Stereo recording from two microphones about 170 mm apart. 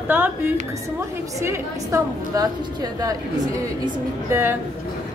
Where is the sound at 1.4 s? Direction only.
15° right (ahead or behind).